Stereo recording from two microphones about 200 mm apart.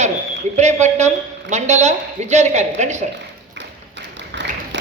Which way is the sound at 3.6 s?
65° right (ahead or behind).